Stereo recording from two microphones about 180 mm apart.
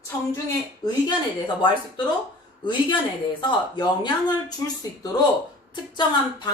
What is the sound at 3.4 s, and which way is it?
Speech, 25° left (ahead or behind).